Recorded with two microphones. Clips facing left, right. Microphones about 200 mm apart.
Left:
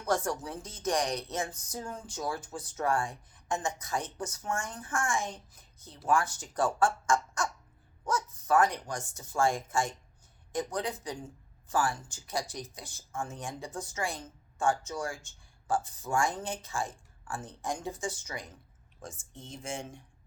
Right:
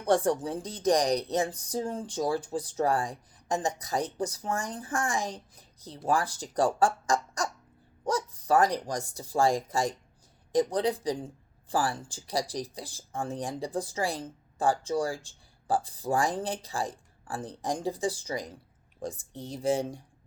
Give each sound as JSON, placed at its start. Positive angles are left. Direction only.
{"t": 0.0, "sound": "speech", "side_deg": -30}